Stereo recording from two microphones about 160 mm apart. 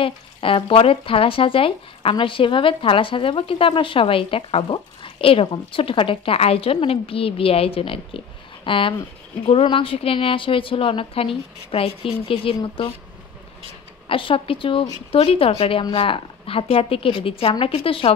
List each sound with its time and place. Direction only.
0.0 s speech: 35° left (ahead or behind)
14.0 s speech: 35° left (ahead or behind)